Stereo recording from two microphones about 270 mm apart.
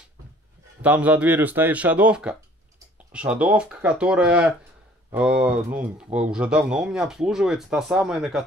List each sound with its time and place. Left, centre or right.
0.8 s speech: centre